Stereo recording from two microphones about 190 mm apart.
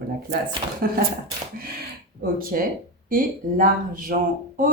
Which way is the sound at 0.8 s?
55° right (ahead or behind).